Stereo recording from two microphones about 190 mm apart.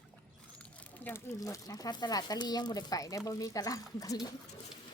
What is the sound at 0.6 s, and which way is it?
Speech, 5° left (ahead or behind).